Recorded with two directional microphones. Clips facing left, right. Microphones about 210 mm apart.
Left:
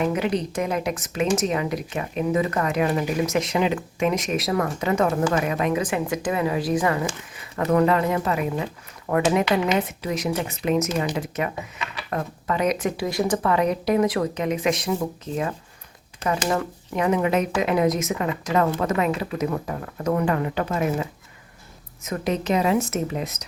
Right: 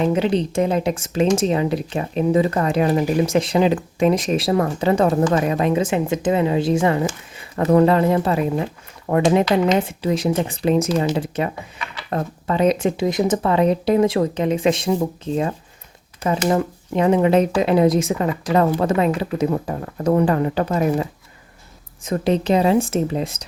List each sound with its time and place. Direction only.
0.0 s a woman's voice: 30° right (ahead or behind)